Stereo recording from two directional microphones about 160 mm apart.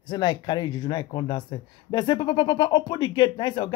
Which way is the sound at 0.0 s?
30° left (ahead or behind).